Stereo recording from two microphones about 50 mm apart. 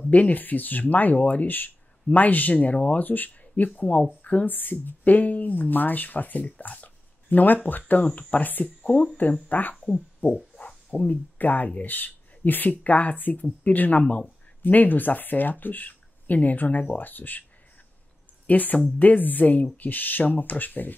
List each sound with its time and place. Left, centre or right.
0.1 s speech: left
8.8 s speech: left
9.5 s speech: left
10.2 s a sound: left
10.7 s speech: left
18.5 s speech: left